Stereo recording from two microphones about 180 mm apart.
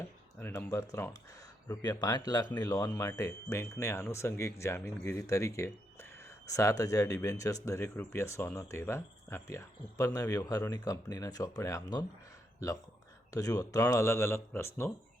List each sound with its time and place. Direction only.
0.3 s speech: 15° left (ahead or behind)